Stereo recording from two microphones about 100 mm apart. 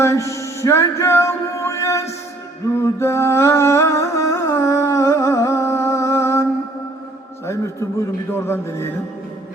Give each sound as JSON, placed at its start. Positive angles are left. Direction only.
{"t": 0.0, "sound": "music", "side_deg": 30}
{"t": 7.4, "sound": "a man's voice", "side_deg": 30}